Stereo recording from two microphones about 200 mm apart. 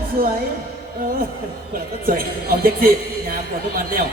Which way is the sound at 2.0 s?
45° right (ahead or behind).